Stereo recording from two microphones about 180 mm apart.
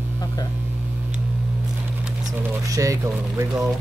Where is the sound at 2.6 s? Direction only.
20° right (ahead or behind).